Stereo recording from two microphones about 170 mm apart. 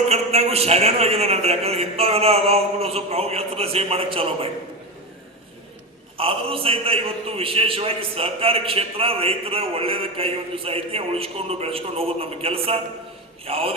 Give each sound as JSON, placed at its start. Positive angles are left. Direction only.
{"t": 0.1, "sound": "a man's voice", "side_deg": -40}
{"t": 6.1, "sound": "a man's voice", "side_deg": -35}